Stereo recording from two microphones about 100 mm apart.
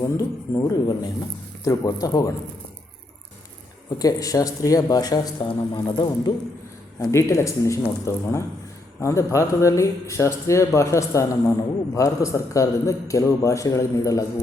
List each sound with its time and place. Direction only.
0.2 s speech: 40° left (ahead or behind)
3.8 s a man's voice: 35° left (ahead or behind)
7.0 s speech: 30° left (ahead or behind)